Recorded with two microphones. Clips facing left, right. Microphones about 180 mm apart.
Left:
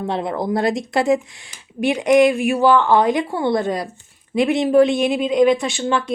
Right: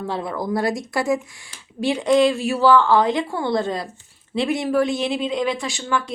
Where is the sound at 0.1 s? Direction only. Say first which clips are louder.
Left 3 dB; 20° left (ahead or behind).